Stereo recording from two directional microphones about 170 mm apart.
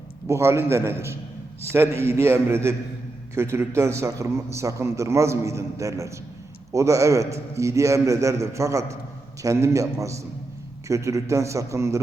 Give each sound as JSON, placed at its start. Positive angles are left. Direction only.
{"t": 0.3, "sound": "a man's voice", "side_deg": -15}